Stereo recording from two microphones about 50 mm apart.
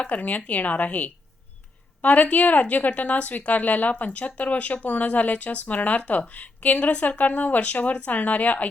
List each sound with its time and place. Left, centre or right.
0.0 s speech: left